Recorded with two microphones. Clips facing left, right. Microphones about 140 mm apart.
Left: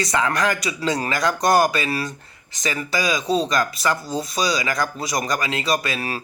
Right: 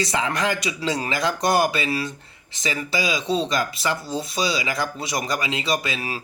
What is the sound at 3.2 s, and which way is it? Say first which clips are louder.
Speech: left 2 dB; centre (ahead or behind).